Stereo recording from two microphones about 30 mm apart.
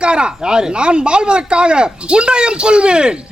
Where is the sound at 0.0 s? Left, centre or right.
Right.